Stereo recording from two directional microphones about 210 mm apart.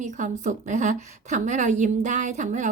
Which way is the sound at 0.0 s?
35° right (ahead or behind).